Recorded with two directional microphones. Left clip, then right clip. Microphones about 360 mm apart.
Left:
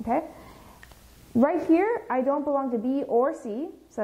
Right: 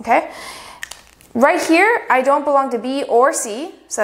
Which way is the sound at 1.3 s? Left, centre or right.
Centre.